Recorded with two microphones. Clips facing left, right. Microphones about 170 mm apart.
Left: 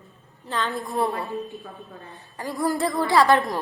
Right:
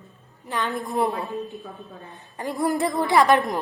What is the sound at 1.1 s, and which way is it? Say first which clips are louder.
Speech: even; centre (ahead or behind).